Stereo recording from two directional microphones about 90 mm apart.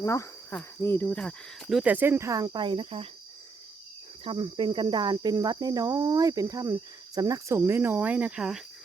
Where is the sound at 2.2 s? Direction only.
40° right (ahead or behind).